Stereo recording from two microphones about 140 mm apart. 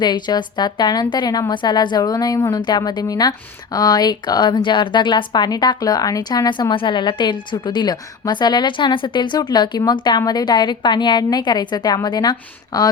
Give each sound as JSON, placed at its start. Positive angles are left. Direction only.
{"t": 0.0, "sound": "a woman's voice", "side_deg": 30}